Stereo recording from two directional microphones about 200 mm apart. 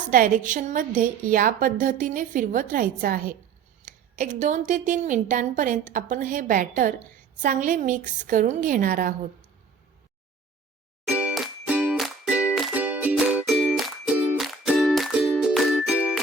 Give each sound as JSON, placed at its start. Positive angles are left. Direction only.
{"t": 0.1, "sound": "a woman's voice", "side_deg": -40}
{"t": 11.0, "sound": "music", "side_deg": -5}